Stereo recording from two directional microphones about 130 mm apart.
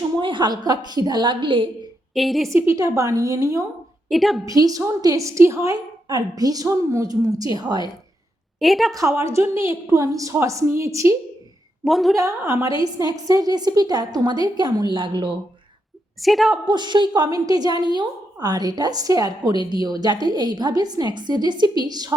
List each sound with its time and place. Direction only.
0.2 s a woman's voice: 40° right (ahead or behind)
2.1 s a woman's voice: centre (ahead or behind)
2.6 s a woman's voice: 25° right (ahead or behind)
4.1 s a woman's voice: centre (ahead or behind)
4.4 s a woman's voice: 30° right (ahead or behind)
8.5 s a woman's voice: centre (ahead or behind)
9.0 s a woman's voice: 25° right (ahead or behind)
11.9 s a woman's voice: centre (ahead or behind)
12.1 s a woman's voice: 25° right (ahead or behind)
16.2 s a woman's voice: centre (ahead or behind)
16.6 s a woman's voice: 35° right (ahead or behind)